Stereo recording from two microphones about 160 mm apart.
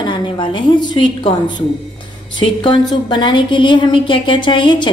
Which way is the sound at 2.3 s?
30° left (ahead or behind).